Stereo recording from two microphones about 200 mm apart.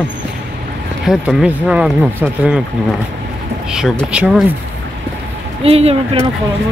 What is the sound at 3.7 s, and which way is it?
Speech, 5° right (ahead or behind).